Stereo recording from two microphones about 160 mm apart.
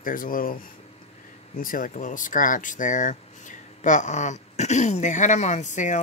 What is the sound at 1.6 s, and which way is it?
Speech, 60° left (ahead or behind).